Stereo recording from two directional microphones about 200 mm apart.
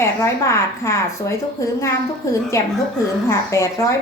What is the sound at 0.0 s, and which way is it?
Speech, 15° left (ahead or behind).